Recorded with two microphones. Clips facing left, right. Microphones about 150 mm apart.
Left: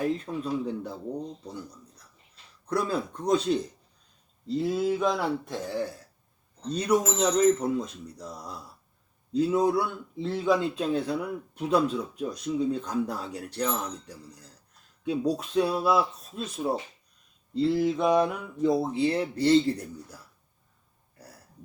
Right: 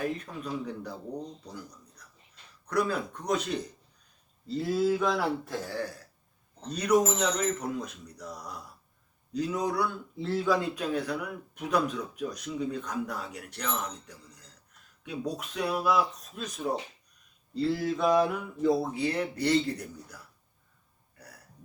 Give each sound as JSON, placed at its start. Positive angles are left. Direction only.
{"t": 0.0, "sound": "speech", "side_deg": 25}
{"t": 2.6, "sound": "speech", "side_deg": 30}